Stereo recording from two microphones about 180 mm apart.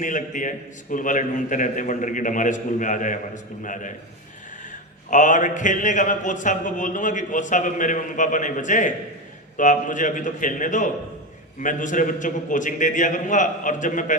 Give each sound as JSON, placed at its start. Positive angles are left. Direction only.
{"t": 0.0, "sound": "a man's voice", "side_deg": 45}
{"t": 5.1, "sound": "a man's voice", "side_deg": 45}